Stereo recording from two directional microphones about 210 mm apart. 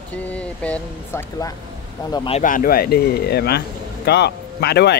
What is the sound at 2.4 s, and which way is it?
Speech, 40° left (ahead or behind).